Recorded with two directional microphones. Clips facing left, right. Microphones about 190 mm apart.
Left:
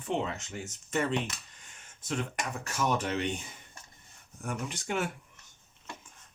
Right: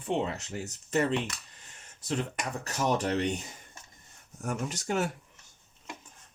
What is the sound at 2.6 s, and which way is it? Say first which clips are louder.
Speech: right 2 dB; 35° right (ahead or behind).